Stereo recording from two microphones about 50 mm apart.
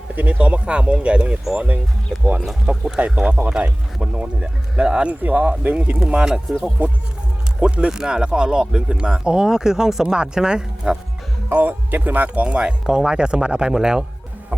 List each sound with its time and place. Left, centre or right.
0.2 s speech: right
1.5 s speech: right
2.7 s speech: right
6.2 s speech: centre
6.8 s speech: right
7.6 s speech: centre
11.5 s speech: right
12.3 s speech: right